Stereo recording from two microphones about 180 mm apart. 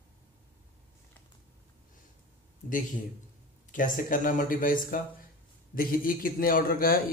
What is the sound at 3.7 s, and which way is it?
A man's voice, 50° left (ahead or behind).